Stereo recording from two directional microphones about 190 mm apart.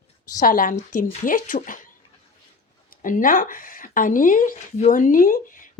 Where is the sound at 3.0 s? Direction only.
45° left (ahead or behind).